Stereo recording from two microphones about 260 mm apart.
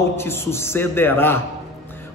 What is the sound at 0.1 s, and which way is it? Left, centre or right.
A man's voice, centre.